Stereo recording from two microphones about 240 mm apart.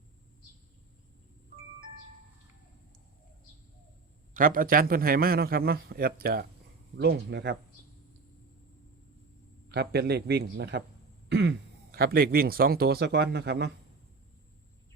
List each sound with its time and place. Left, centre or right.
4.4 s a man's voice: right
9.7 s a man's voice: right